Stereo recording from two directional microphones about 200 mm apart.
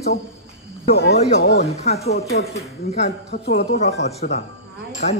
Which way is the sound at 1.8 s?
30° left (ahead or behind).